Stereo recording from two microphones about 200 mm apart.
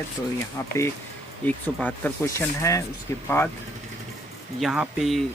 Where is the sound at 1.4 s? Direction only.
10° left (ahead or behind).